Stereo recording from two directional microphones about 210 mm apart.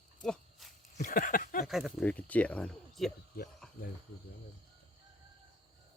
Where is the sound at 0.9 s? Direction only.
40° left (ahead or behind).